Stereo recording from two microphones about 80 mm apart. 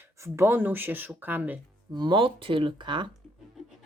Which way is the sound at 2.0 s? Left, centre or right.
Right.